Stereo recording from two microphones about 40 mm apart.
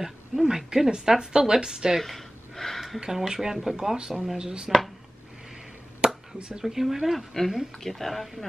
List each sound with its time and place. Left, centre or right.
0.0 s a woman's voice: centre
2.0 s gasp: centre
3.0 s a woman's voice: centre
4.1 s speech: centre
4.4 s speech: centre
4.6 s speech: centre
5.9 s a sound: centre
6.6 s a woman's voice: centre